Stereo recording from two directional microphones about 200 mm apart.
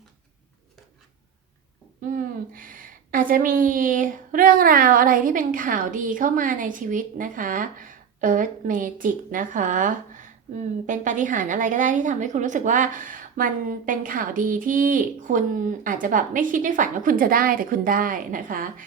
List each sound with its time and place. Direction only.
2.0 s a woman's voice: 40° right (ahead or behind)